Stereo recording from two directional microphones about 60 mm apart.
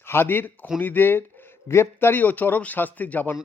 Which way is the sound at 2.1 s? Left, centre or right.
Left.